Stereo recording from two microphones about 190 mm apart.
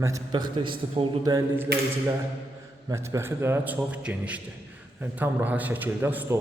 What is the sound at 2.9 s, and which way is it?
A man's voice, 15° right (ahead or behind).